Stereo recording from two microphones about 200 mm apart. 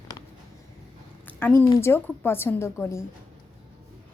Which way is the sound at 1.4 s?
10° left (ahead or behind).